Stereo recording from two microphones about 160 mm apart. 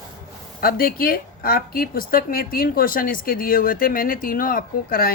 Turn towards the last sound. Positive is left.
turn(degrees=60)  # may be behind; listen again after turning